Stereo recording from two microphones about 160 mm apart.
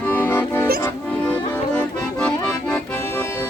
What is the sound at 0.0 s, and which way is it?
Accordion, 10° left (ahead or behind).